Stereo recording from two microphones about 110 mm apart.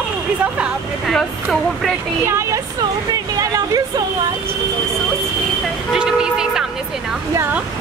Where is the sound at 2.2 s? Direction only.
25° right (ahead or behind).